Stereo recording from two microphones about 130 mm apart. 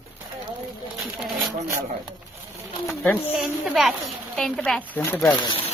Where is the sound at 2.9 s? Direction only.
5° left (ahead or behind).